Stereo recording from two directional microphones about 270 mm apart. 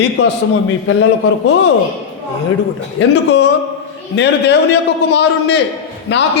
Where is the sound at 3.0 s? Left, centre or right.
Left.